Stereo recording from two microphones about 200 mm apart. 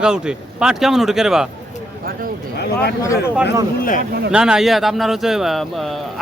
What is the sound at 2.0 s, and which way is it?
Speech, 45° right (ahead or behind).